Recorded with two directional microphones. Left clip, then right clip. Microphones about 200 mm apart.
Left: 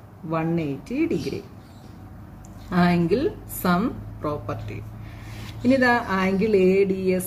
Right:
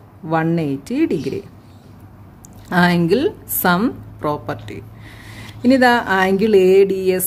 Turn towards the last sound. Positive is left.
turn(degrees=-55)  # may be behind; listen again after turning